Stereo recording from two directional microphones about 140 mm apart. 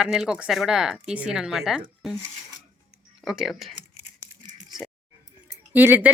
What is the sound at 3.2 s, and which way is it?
Speech, 5° right (ahead or behind).